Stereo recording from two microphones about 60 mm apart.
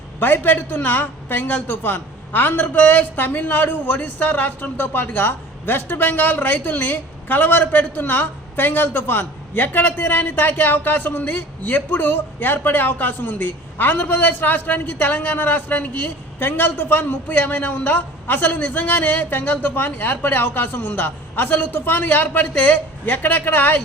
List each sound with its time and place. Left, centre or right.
0.2 s a woman's voice: left